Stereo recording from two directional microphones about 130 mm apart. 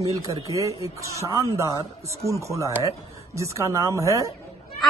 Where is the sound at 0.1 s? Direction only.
25° right (ahead or behind).